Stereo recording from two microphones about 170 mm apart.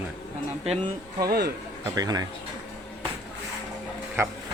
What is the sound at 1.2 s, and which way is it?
Speech, 65° right (ahead or behind).